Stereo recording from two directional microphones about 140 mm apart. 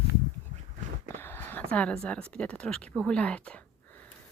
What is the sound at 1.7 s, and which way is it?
Speech, 10° left (ahead or behind).